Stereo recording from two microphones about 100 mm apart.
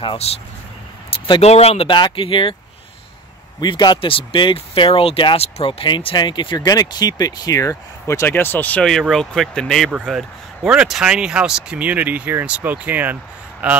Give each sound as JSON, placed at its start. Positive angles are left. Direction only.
{"t": 0.0, "sound": "speech", "side_deg": 75}
{"t": 1.1, "sound": "speech", "side_deg": 65}
{"t": 1.9, "sound": "speech", "side_deg": 50}
{"t": 3.6, "sound": "speech", "side_deg": 50}
{"t": 6.7, "sound": "speech", "side_deg": 40}
{"t": 9.0, "sound": "speech", "side_deg": 5}